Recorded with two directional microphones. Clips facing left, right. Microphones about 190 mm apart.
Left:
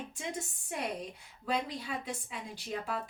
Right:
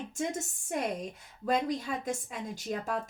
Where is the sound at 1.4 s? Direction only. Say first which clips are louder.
Right 5 dB; 45° right (ahead or behind).